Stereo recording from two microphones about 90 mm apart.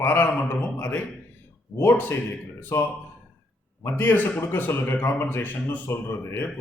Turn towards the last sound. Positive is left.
turn(degrees=25)  # may be behind; listen again after turning